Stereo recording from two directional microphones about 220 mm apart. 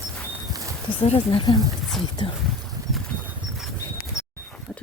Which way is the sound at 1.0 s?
25° left (ahead or behind).